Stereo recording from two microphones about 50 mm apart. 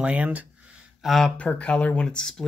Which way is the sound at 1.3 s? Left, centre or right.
Left.